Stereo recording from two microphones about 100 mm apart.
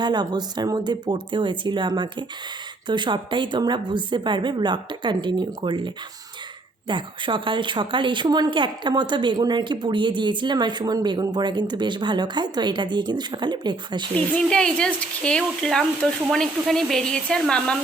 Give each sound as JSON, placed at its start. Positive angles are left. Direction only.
{"t": 0.0, "sound": "speech", "side_deg": -45}
{"t": 14.3, "sound": "speech", "side_deg": 10}